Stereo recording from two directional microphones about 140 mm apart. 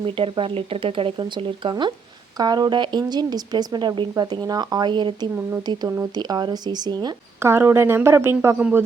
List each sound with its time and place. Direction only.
0.0 s speech: 40° right (ahead or behind)
7.3 s a woman's voice: 15° right (ahead or behind)